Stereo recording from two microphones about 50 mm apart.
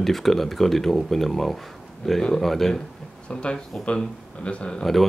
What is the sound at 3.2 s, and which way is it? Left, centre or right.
Speech, centre.